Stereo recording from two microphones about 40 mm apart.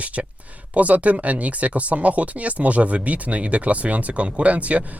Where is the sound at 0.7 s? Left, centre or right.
Right.